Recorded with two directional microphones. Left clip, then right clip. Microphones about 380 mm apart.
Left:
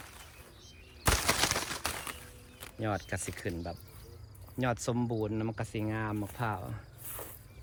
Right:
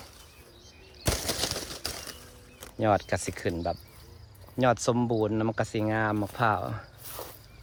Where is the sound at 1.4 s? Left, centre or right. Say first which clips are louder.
Left 1 dB; left.